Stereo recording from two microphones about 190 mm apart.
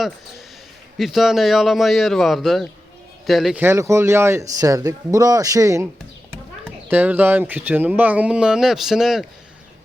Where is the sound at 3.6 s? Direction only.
15° right (ahead or behind).